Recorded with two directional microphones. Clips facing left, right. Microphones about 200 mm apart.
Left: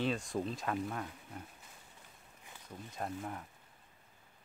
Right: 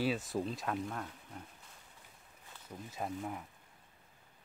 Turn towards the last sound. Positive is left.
turn(degrees=-5)  # may be behind; listen again after turning